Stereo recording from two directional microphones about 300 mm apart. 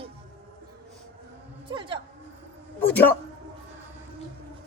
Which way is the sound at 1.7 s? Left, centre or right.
Centre.